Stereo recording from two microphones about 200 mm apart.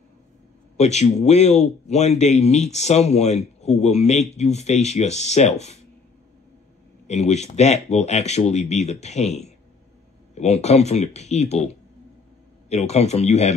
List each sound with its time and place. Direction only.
0.7 s speech: 35° left (ahead or behind)
7.1 s speech: 35° left (ahead or behind)